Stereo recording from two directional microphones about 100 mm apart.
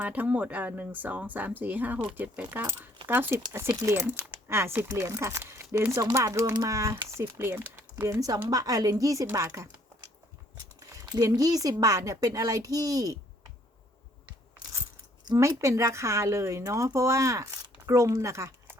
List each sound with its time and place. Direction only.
0.0 s speech: 15° right (ahead or behind)
4.9 s speech: 35° right (ahead or behind)
11.0 s speech: 40° right (ahead or behind)
15.4 s speech: 30° right (ahead or behind)